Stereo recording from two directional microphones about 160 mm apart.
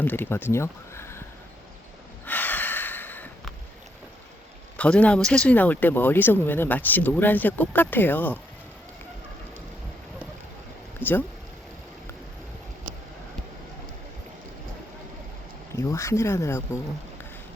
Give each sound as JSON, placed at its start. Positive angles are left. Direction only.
{"t": 0.0, "sound": "speech", "side_deg": 10}
{"t": 0.5, "sound": "a sound", "side_deg": 15}
{"t": 2.2, "sound": "snort", "side_deg": 10}
{"t": 4.8, "sound": "speech", "side_deg": 10}
{"t": 11.0, "sound": "speech", "side_deg": -10}
{"t": 15.7, "sound": "speech", "side_deg": 20}